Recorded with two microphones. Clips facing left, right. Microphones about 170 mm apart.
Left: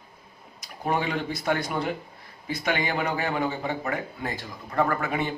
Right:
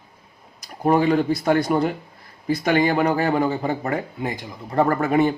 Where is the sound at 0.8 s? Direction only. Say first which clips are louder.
Right 9 dB; 40° right (ahead or behind).